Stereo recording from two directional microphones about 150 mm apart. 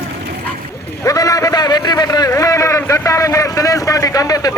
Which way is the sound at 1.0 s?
25° left (ahead or behind).